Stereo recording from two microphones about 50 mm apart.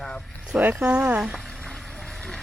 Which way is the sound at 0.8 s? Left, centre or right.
Right.